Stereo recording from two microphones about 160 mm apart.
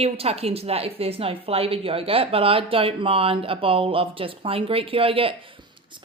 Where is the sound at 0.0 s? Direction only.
40° right (ahead or behind).